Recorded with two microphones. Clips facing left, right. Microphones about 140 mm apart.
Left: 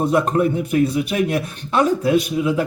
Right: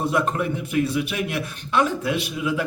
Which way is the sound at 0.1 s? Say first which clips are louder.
Left 6 dB; 40° left (ahead or behind).